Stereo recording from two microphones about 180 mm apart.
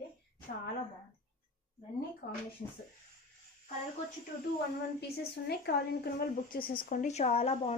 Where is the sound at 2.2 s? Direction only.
45° left (ahead or behind).